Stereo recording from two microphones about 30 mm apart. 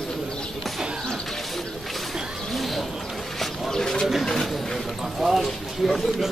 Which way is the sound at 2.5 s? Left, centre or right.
Centre.